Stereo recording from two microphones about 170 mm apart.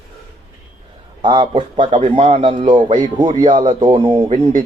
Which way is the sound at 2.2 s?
45° right (ahead or behind).